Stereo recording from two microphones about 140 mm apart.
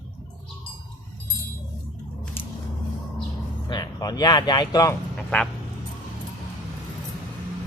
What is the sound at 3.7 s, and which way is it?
Speech, 30° left (ahead or behind).